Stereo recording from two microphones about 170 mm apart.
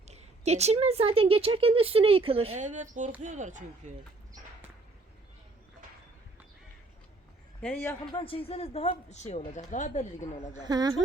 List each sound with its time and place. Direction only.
0.1 s a woman's voice: 40° right (ahead or behind)
7.6 s a man's voice: 10° left (ahead or behind)
8.1 s speech: 35° left (ahead or behind)
10.6 s speech: 25° right (ahead or behind)